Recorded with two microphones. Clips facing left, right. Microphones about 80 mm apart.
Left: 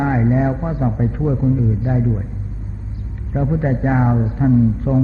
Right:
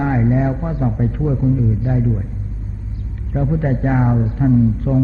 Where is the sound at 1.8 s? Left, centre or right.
Left.